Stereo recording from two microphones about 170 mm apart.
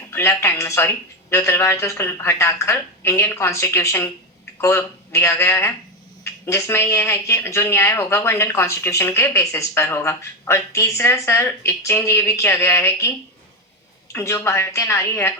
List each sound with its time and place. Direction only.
0.1 s speech: 15° left (ahead or behind)